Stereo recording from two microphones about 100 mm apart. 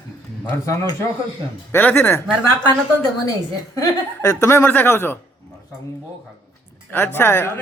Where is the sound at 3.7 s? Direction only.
30° left (ahead or behind).